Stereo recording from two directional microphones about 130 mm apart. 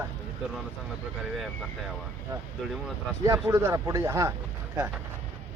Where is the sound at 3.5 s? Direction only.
20° right (ahead or behind).